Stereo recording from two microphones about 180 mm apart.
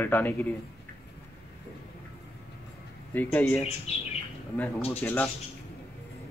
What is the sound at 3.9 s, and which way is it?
Speech, 35° left (ahead or behind).